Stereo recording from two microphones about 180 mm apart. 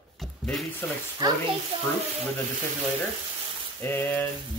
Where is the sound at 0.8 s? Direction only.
10° left (ahead or behind).